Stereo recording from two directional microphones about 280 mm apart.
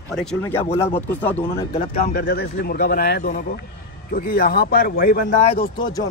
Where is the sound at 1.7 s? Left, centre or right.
Left.